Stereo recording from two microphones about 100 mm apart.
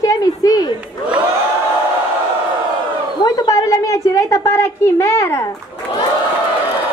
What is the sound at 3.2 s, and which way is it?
A woman's voice, 40° left (ahead or behind).